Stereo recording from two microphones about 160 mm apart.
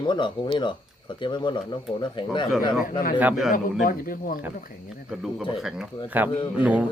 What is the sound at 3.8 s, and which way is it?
Speech, 60° left (ahead or behind).